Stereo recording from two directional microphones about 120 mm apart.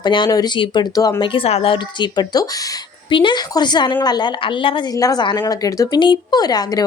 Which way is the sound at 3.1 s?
40° left (ahead or behind).